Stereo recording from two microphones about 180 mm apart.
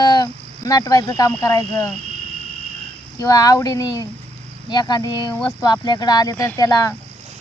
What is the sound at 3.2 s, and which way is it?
Speech, 20° left (ahead or behind).